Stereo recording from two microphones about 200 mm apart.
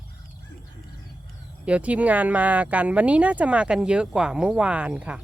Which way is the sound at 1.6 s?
5° right (ahead or behind).